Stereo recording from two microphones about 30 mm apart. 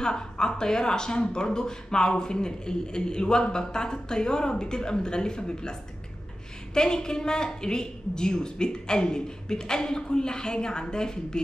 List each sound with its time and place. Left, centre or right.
0.0 s a woman's voice: left